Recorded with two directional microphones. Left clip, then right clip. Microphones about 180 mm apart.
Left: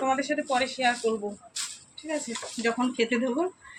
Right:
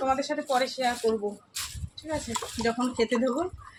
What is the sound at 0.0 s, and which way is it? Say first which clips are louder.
Speech: left 1 dB; centre (ahead or behind).